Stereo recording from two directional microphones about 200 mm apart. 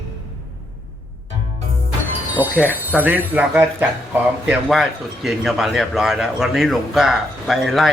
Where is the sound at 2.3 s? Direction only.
10° right (ahead or behind).